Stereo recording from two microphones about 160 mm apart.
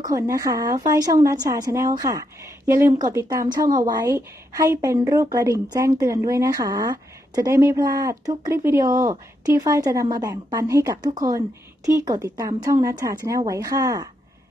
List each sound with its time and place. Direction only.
0.0 s a woman's voice: 20° right (ahead or behind)